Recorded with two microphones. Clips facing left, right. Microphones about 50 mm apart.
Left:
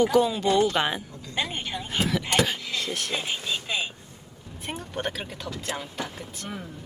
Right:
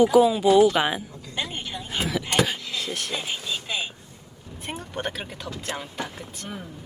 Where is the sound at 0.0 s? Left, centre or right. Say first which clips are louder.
Right 4 dB; centre.